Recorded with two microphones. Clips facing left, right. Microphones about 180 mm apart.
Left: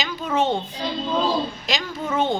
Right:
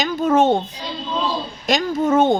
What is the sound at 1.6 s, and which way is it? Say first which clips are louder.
Speech: right 8 dB; 45° right (ahead or behind).